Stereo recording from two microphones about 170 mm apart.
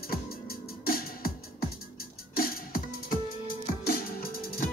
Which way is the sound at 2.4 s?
60° left (ahead or behind).